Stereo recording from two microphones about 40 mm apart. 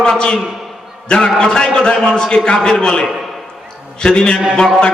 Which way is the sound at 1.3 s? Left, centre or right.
Centre.